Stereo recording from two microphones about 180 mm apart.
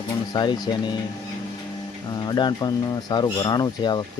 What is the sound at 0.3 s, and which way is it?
Speech, 20° left (ahead or behind).